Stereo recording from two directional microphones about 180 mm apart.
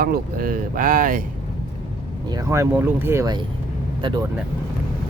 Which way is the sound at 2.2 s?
20° right (ahead or behind).